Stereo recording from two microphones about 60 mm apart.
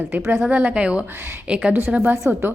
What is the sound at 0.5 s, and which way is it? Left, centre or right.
A woman's voice, right.